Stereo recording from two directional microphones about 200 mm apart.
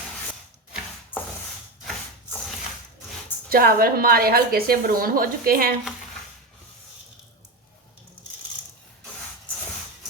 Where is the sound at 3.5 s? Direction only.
45° right (ahead or behind).